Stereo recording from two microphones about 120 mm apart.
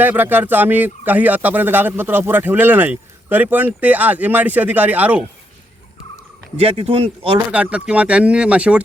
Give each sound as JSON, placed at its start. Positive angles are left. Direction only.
{"t": 0.0, "sound": "speech", "side_deg": -15}
{"t": 6.6, "sound": "speech", "side_deg": -55}
{"t": 7.5, "sound": "speech", "side_deg": -10}